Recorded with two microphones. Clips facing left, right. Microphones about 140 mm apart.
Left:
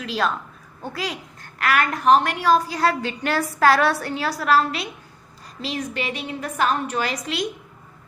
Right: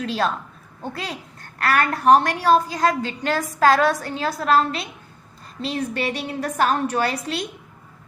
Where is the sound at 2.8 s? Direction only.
15° right (ahead or behind).